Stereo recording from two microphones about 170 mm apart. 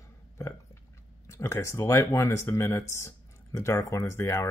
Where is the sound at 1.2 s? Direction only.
15° left (ahead or behind).